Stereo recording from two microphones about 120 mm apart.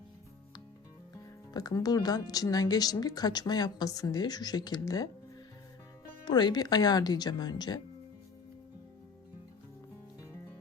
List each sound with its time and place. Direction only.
1.5 s speech: 30° left (ahead or behind)
6.2 s speech: 35° left (ahead or behind)